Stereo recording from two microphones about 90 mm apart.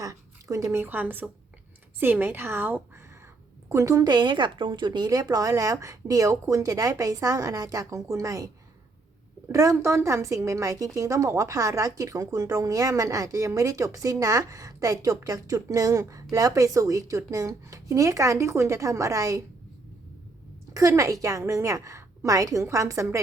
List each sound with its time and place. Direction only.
0.0 s a woman's voice: 40° right (ahead or behind)
3.7 s speech: 35° right (ahead or behind)
9.5 s speech: 40° right (ahead or behind)
20.7 s speech: 35° right (ahead or behind)